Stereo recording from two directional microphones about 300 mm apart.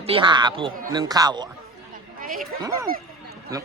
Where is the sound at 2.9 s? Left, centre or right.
Right.